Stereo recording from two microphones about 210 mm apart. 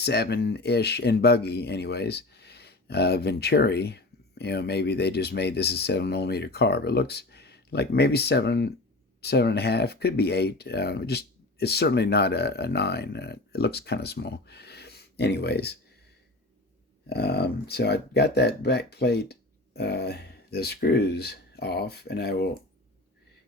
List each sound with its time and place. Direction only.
0.0 s speech: 50° left (ahead or behind)
17.1 s speech: 50° left (ahead or behind)